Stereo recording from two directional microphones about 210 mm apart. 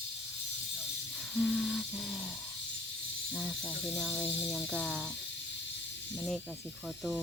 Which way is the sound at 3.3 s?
5° left (ahead or behind).